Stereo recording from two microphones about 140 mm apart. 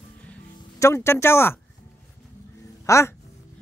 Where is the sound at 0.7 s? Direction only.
20° left (ahead or behind).